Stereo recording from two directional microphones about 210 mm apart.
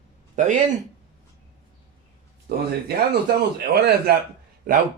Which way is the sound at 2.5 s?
50° right (ahead or behind).